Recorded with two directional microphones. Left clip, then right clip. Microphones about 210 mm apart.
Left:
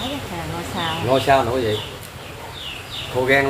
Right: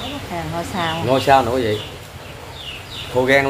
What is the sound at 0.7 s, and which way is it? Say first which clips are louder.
Speech: right 1 dB; 45° right (ahead or behind).